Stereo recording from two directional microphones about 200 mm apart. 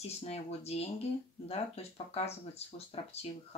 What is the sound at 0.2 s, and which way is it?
Speech, 30° left (ahead or behind).